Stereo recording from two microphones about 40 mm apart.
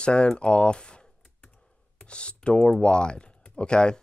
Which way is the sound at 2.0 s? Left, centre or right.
Left.